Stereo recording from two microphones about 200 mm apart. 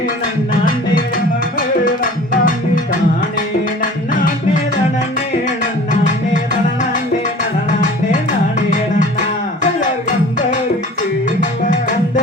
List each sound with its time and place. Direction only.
1.1 s music: 45° left (ahead or behind)
7.7 s music: 40° left (ahead or behind)
11.3 s music: 40° left (ahead or behind)